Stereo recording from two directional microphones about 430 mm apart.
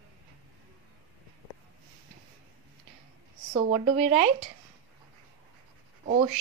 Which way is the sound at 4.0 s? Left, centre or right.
Centre.